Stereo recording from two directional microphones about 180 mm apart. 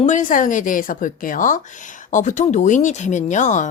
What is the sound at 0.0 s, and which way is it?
Speech, 45° left (ahead or behind).